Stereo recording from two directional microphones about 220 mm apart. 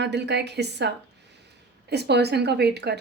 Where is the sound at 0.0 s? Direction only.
50° right (ahead or behind).